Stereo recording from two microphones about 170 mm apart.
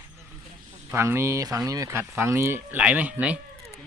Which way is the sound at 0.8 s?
15° right (ahead or behind).